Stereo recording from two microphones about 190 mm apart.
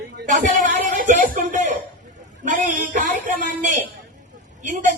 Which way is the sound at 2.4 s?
40° right (ahead or behind).